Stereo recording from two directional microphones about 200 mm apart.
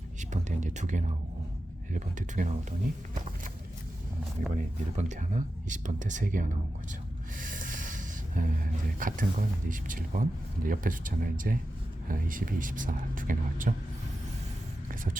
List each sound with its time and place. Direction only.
0.2 s speech: 35° right (ahead or behind)
4.5 s speech: 35° right (ahead or behind)
7.3 s snort: 45° right (ahead or behind)
9.0 s speech: 45° right (ahead or behind)